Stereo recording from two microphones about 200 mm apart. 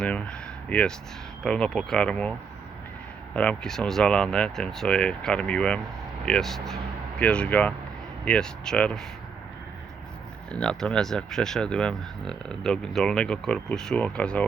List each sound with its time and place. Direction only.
0.0 s speech: 5° left (ahead or behind)
3.3 s speech: 5° left (ahead or behind)
10.5 s speech: 5° left (ahead or behind)